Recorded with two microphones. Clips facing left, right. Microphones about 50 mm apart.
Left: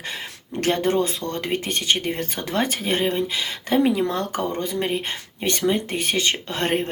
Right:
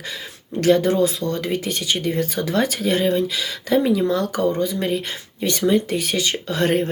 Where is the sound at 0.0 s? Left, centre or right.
Left.